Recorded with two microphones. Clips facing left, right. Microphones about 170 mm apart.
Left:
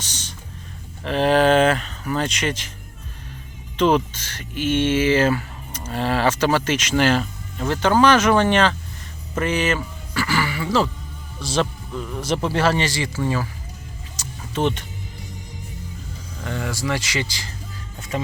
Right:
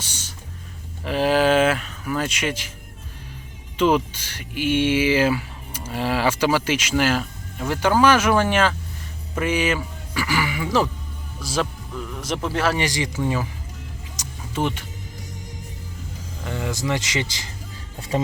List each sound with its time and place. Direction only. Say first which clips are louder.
0.0 s music: left 1 dB; 10° right (ahead or behind)
1.0 s speech: left 2 dB; 5° right (ahead or behind)
3.8 s speech: left 1 dB; 10° right (ahead or behind)
11.3 s speech: left 3 dB; 25° left (ahead or behind)
12.2 s speech: left 3 dB; centre (ahead or behind)
12.8 s speech: even; 15° right (ahead or behind)
14.2 s vehicle: left 2 dB; 10° right (ahead or behind)
16.4 s speech: even; 15° right (ahead or behind)
18.1 s speech: right 3 dB; 35° right (ahead or behind)